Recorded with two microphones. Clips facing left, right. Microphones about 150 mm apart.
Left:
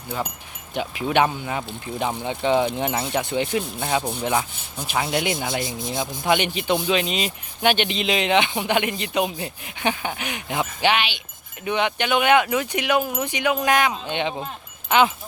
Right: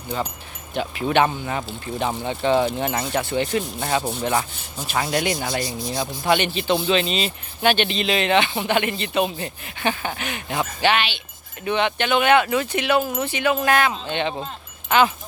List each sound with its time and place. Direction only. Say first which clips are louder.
0.7 s speech: right 1 dB; 10° left (ahead or behind)
5.0 s rub: right 2 dB; centre (ahead or behind)
5.5 s speech: right 1 dB; 20° left (ahead or behind)